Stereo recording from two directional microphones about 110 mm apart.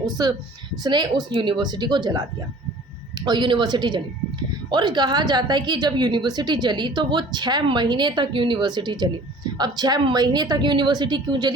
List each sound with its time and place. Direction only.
0.0 s a woman's voice: 35° right (ahead or behind)
3.2 s a woman's voice: 45° right (ahead or behind)